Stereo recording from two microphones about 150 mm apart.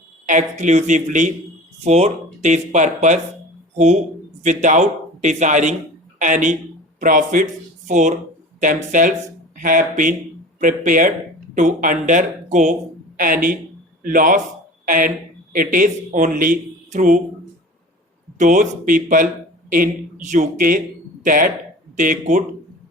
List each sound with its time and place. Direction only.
0.3 s speech: 55° right (ahead or behind)
13.1 s speech: 65° right (ahead or behind)
18.3 s speech: 60° right (ahead or behind)